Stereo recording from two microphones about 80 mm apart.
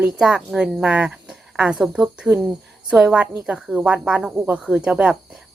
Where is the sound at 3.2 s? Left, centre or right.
Centre.